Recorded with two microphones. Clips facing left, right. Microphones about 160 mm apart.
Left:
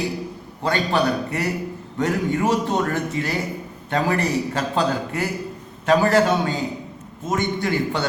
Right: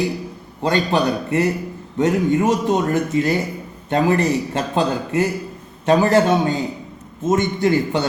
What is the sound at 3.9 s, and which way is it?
A man's voice, 25° right (ahead or behind).